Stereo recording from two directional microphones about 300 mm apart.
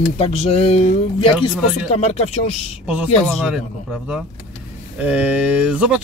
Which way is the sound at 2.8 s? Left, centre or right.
Centre.